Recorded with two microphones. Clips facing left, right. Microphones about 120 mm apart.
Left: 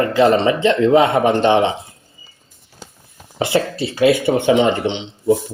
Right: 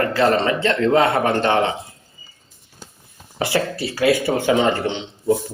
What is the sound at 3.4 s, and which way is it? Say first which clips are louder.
Speech: left 3 dB; 25° left (ahead or behind).